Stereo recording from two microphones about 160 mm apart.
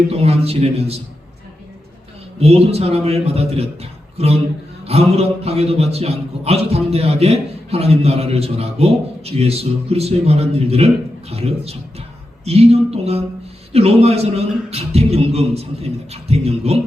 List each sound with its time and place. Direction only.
0.1 s a man's voice: 40° right (ahead or behind)
2.4 s a man's voice: 40° right (ahead or behind)